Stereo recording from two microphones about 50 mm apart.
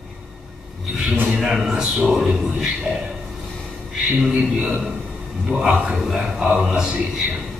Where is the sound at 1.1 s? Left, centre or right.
Right.